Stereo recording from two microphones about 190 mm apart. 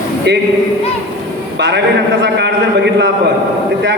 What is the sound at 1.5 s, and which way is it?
A man's voice, 65° right (ahead or behind).